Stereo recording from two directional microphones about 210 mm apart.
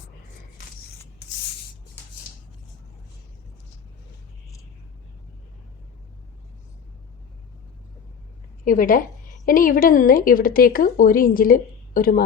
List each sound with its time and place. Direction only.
8.6 s a woman's voice: 40° left (ahead or behind)